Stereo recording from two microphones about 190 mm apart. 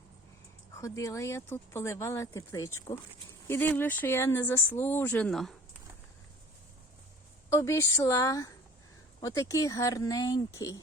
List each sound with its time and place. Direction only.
0.8 s speech: 15° left (ahead or behind)
7.5 s speech: 15° left (ahead or behind)